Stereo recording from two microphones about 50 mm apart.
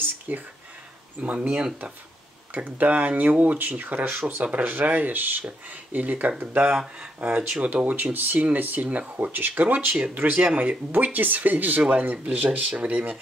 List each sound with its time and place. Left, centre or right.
0.3 s speech: right
2.5 s speech: right
10.4 s speech: right
10.9 s speech: right